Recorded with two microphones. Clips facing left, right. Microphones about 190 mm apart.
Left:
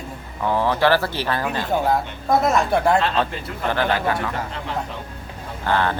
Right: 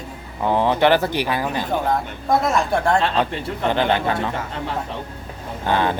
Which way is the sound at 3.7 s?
20° right (ahead or behind).